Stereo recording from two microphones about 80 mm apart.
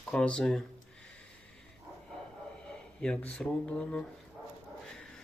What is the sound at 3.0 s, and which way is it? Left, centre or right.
Speech, centre.